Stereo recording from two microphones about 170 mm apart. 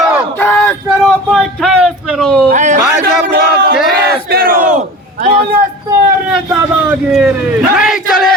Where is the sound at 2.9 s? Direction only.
65° right (ahead or behind).